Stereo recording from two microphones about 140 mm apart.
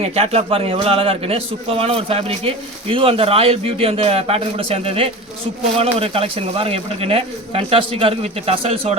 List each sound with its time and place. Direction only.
0.0 s a man's voice: 45° right (ahead or behind)